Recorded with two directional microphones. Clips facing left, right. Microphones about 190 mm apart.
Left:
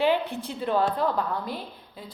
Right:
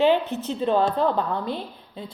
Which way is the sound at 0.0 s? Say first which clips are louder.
Right 4 dB; 20° right (ahead or behind).